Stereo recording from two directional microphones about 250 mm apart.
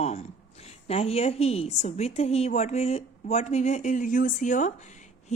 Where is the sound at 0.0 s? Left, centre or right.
Left.